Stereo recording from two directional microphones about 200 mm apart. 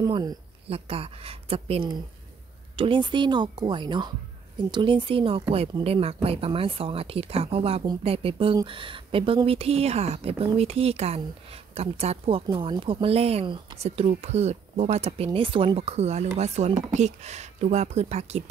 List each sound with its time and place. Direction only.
0.0 s speech: 20° right (ahead or behind)